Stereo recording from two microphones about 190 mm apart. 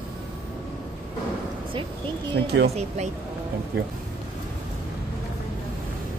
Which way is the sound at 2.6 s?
35° right (ahead or behind).